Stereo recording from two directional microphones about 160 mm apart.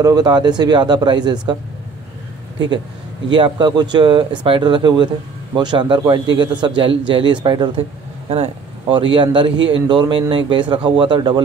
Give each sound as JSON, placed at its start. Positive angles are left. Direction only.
{"t": 0.0, "sound": "a man's voice", "side_deg": -25}
{"t": 3.3, "sound": "a man's voice", "side_deg": -30}